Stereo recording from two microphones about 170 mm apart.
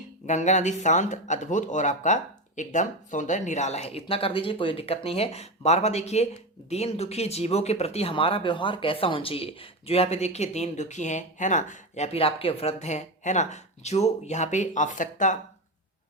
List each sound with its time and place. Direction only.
0.3 s speech: 45° left (ahead or behind)